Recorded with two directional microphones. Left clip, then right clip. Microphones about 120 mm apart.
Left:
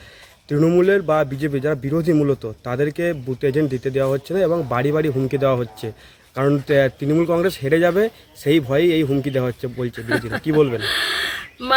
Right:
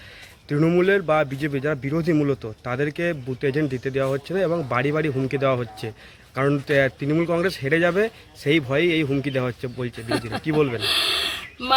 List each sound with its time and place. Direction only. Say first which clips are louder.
0.4 s a man's voice: left 3 dB; 35° left (ahead or behind)
9.9 s speech: left 4 dB; centre (ahead or behind)
10.8 s a sound: left 1 dB; centre (ahead or behind)